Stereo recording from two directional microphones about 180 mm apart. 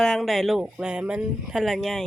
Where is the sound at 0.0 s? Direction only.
5° left (ahead or behind).